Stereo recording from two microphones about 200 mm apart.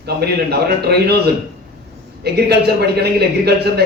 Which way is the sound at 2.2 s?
55° right (ahead or behind).